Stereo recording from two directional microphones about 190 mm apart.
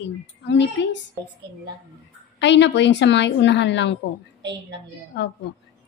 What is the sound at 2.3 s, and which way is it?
A woman's voice, 70° left (ahead or behind).